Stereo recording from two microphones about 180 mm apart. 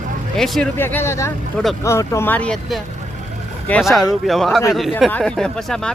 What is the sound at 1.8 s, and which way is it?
Speech, 15° left (ahead or behind).